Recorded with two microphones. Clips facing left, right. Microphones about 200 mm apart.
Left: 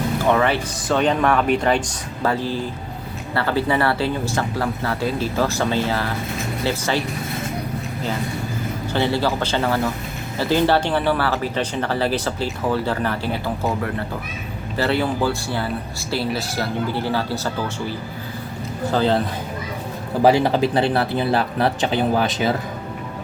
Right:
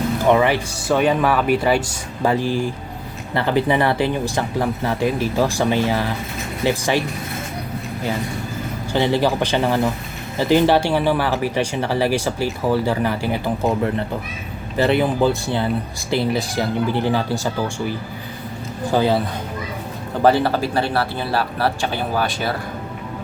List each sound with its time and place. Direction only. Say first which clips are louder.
0.3 s speech: right 3 dB; 15° right (ahead or behind)
8.9 s speech: right 3 dB; 15° right (ahead or behind)
14.8 s speech: right 4 dB; 15° right (ahead or behind)
20.2 s speech: left 1 dB; 15° left (ahead or behind)